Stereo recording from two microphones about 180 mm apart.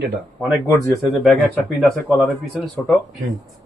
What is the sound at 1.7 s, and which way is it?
Speech, centre (ahead or behind).